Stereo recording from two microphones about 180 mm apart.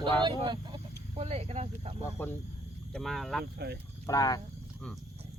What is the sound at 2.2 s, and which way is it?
Speech, 10° left (ahead or behind).